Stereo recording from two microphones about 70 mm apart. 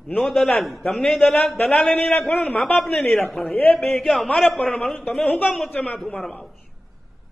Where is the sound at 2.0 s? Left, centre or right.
Left.